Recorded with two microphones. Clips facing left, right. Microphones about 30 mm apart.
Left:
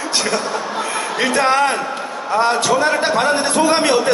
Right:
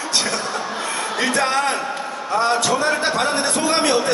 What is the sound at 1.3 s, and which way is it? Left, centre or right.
Speech, left.